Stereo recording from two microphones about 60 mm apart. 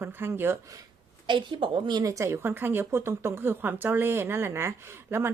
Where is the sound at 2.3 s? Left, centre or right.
Right.